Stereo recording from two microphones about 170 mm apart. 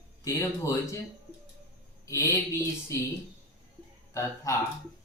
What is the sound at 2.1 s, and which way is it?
Speech, 15° left (ahead or behind).